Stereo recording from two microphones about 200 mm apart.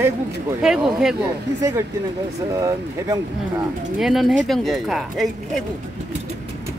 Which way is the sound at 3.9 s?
Centre (ahead or behind).